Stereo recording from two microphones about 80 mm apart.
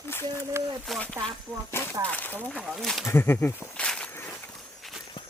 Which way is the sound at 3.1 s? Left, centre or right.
Left.